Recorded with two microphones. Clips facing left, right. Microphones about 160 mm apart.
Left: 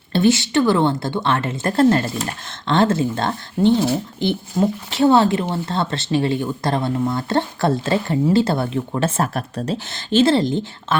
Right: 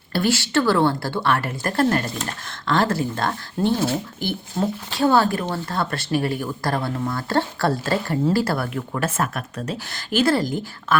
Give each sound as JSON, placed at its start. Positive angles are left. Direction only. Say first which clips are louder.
{"t": 0.1, "sound": "speech", "louder": "left 5 dB", "side_deg": 20}
{"t": 4.6, "sound": "speech", "louder": "left 4 dB", "side_deg": 5}
{"t": 4.9, "sound": "speech", "louder": "left 3 dB", "side_deg": 25}